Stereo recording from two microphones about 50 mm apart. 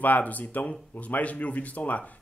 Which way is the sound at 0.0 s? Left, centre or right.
Left.